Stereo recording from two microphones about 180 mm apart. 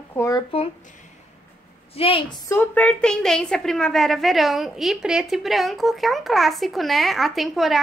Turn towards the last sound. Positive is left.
turn(degrees=0)  # may be behind; listen again after turning